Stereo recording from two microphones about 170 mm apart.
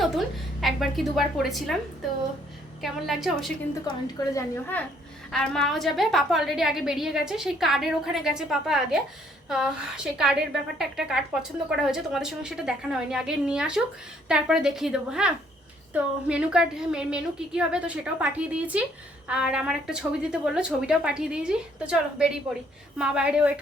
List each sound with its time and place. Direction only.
0.6 s a woman's voice: centre (ahead or behind)
3.8 s a woman's voice: 25° left (ahead or behind)
4.5 s a woman's voice: 10° left (ahead or behind); by 23.5 s 5° right (ahead or behind)